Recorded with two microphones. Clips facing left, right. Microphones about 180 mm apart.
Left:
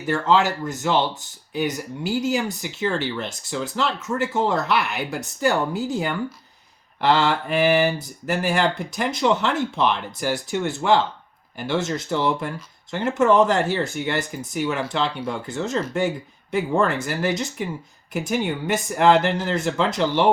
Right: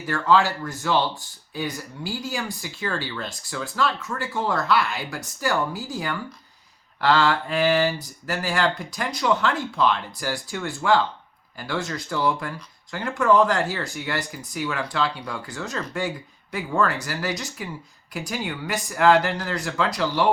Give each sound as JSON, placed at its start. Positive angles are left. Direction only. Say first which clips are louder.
{"t": 0.1, "sound": "speech", "louder": "left 1 dB", "side_deg": 20}